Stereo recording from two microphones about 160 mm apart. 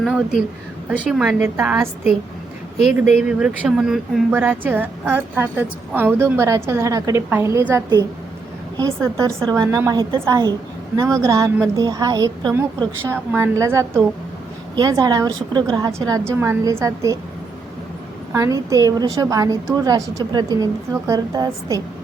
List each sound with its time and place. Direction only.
0.0 s a woman's voice: centre (ahead or behind); by 8.0 s 20° right (ahead or behind)
9.5 s a woman's voice: 20° right (ahead or behind)
18.3 s a woman's voice: 20° right (ahead or behind)